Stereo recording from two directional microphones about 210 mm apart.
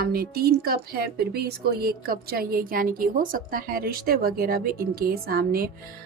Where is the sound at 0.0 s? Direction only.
45° right (ahead or behind).